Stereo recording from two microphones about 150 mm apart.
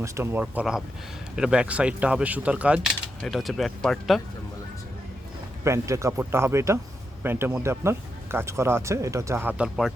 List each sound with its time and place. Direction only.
0.0 s speech: 20° right (ahead or behind); by 4.2 s centre (ahead or behind)
5.6 s speech: 20° right (ahead or behind)